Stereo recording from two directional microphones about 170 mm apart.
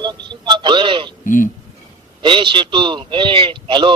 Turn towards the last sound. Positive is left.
turn(degrees=-30)  # may be behind; listen again after turning